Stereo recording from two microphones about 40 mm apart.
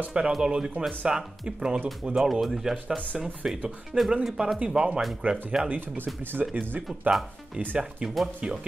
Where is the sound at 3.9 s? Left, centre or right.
Right.